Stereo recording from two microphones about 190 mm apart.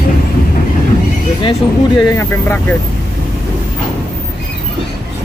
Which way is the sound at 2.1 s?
10° left (ahead or behind).